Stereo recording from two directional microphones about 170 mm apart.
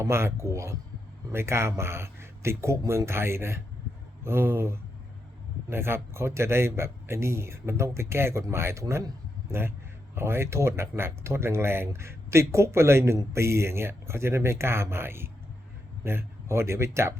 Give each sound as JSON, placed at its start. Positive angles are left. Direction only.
{"t": 0.0, "sound": "speech", "side_deg": -15}